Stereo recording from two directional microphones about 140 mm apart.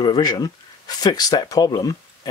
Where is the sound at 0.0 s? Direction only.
30° left (ahead or behind).